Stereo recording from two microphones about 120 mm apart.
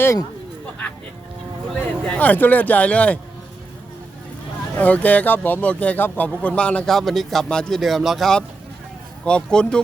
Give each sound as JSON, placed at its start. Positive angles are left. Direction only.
{"t": 0.0, "sound": "speech", "side_deg": 25}
{"t": 2.0, "sound": "speech", "side_deg": 15}
{"t": 4.7, "sound": "speech", "side_deg": 15}